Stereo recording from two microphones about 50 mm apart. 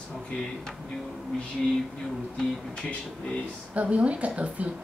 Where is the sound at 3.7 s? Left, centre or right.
Right.